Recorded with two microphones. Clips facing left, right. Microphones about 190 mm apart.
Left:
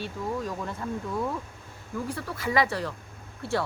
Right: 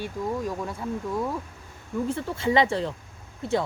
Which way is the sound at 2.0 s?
25° right (ahead or behind).